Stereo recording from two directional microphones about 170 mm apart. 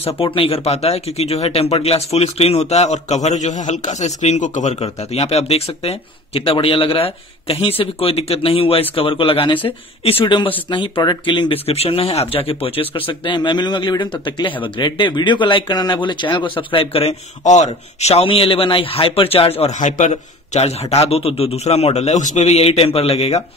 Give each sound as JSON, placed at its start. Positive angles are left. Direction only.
{"t": 0.0, "sound": "speech", "side_deg": 30}